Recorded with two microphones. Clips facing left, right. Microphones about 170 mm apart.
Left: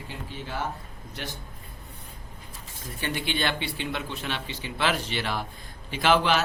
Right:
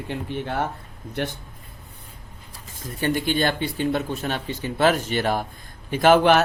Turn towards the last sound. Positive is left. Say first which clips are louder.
# right 7 dB
turn(degrees=-55)  # may be behind; listen again after turning